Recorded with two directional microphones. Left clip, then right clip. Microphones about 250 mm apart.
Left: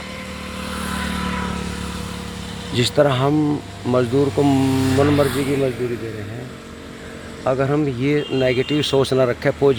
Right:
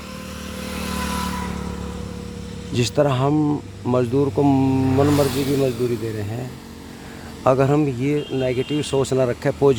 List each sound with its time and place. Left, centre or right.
0.6 s vehicle: right
2.7 s speech: centre
5.3 s speech: right
7.4 s speech: right